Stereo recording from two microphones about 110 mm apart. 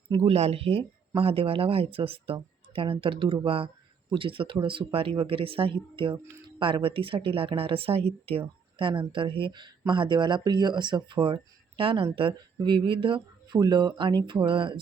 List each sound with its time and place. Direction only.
0.1 s speech: 70° right (ahead or behind); by 14.8 s 50° right (ahead or behind)